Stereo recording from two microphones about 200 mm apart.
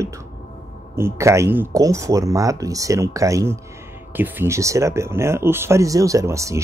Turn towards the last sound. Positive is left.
turn(degrees=-15)  # may be behind; listen again after turning